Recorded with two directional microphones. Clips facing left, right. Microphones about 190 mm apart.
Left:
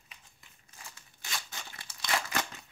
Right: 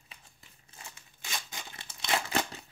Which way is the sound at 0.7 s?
20° right (ahead or behind).